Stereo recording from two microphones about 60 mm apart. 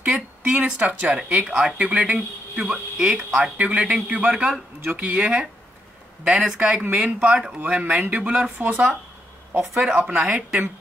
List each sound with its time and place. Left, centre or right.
0.0 s a sound: centre
0.6 s speech: right
1.1 s speech: centre
1.8 s speech: right
2.7 s speech: centre
6.8 s speech: right
9.8 s speech: centre
10.1 s speech: centre